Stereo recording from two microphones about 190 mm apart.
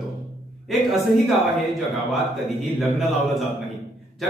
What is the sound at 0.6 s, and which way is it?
A man's voice, centre (ahead or behind).